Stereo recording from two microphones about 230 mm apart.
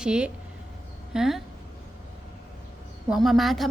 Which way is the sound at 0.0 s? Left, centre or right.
Centre.